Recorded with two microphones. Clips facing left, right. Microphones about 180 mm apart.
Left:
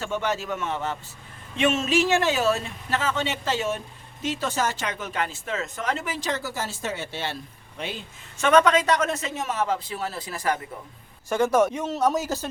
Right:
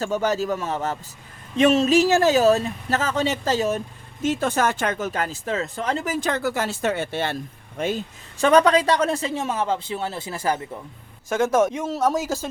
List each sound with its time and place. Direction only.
0.0 s speech: 40° right (ahead or behind)
4.2 s speech: 50° right (ahead or behind); by 6.1 s 35° right (ahead or behind)
6.1 s speech: 55° right (ahead or behind); by 10.6 s 30° right (ahead or behind)
11.5 s speech: 5° right (ahead or behind)